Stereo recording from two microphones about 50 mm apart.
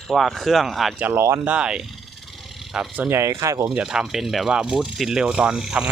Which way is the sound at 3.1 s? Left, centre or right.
Right.